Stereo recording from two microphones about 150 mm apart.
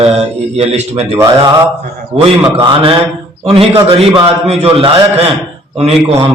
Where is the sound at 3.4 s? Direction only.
40° right (ahead or behind).